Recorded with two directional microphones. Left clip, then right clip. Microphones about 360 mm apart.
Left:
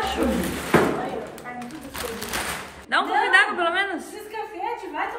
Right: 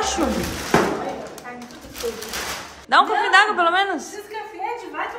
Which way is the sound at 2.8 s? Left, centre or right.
Centre.